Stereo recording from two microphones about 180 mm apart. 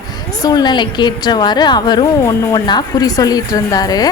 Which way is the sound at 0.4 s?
25° left (ahead or behind).